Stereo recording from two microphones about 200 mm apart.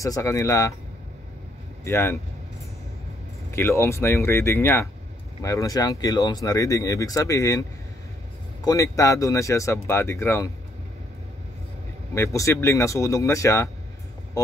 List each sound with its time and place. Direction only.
0.0 s speech: 15° left (ahead or behind)
1.9 s speech: 10° left (ahead or behind)
3.5 s speech: 10° left (ahead or behind)
8.6 s speech: 15° left (ahead or behind)
12.1 s speech: 15° left (ahead or behind)